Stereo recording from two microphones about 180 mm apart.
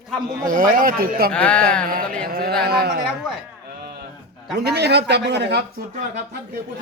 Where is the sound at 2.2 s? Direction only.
55° right (ahead or behind).